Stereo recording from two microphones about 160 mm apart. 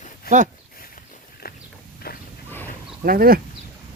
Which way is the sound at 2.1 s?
70° left (ahead or behind).